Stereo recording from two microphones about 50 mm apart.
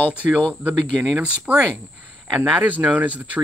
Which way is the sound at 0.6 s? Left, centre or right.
Right.